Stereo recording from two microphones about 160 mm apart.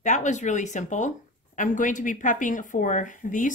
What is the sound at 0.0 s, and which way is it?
Speech, 50° left (ahead or behind).